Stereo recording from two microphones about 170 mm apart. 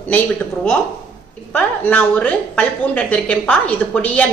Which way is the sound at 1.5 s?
10° left (ahead or behind).